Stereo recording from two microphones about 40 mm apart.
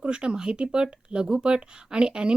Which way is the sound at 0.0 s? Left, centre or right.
Right.